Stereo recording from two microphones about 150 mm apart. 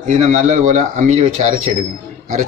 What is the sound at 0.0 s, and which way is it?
Speech, 50° right (ahead or behind).